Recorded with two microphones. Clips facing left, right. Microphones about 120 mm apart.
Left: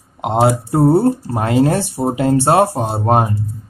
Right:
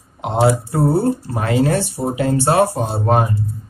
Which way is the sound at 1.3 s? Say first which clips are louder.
Left 2 dB; 40° left (ahead or behind).